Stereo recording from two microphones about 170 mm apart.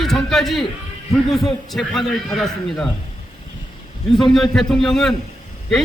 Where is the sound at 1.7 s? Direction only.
Centre (ahead or behind).